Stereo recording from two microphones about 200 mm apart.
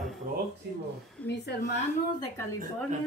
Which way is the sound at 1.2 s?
5° left (ahead or behind).